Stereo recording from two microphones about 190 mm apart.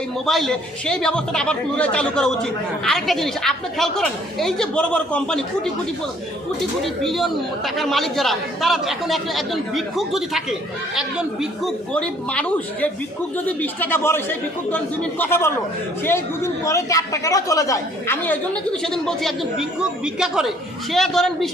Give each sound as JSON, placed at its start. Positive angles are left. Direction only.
{"t": 0.3, "sound": "a man's voice", "side_deg": 0}
{"t": 11.6, "sound": "a woman's voice", "side_deg": 5}
{"t": 19.0, "sound": "a man's voice", "side_deg": 0}